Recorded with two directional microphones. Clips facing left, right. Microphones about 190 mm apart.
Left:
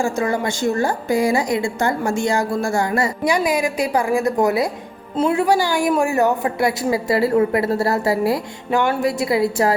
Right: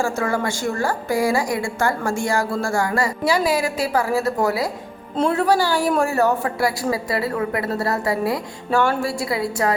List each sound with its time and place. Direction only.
0.0 s a woman's voice: 20° left (ahead or behind)
5.1 s a woman's voice: 10° left (ahead or behind); by 9.7 s 25° left (ahead or behind)